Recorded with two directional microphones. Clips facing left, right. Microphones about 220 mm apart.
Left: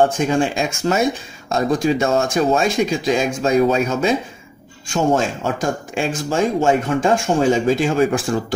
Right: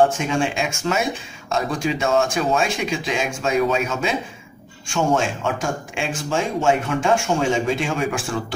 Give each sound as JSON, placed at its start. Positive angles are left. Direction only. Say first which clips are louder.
{"t": 0.3, "sound": "speech", "louder": "left 4 dB", "side_deg": 35}